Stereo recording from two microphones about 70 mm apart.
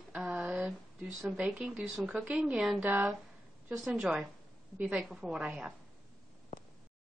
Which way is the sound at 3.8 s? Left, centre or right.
Centre.